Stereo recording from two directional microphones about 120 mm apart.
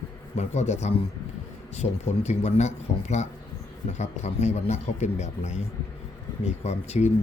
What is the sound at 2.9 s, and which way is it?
Speech, 85° left.